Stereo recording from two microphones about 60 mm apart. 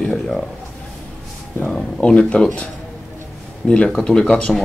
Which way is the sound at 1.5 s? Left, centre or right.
Centre.